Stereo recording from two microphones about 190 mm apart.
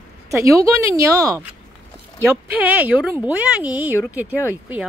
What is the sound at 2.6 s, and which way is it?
Speech, 10° right (ahead or behind).